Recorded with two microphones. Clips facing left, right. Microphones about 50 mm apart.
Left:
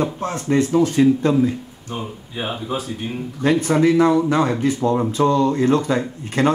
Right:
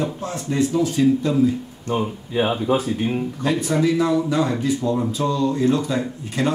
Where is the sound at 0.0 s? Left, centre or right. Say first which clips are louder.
Left 3 dB; left.